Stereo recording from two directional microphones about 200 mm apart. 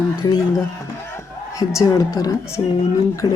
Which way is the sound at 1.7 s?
20° left (ahead or behind).